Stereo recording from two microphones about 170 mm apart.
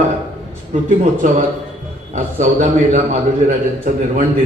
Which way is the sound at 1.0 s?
50° right (ahead or behind).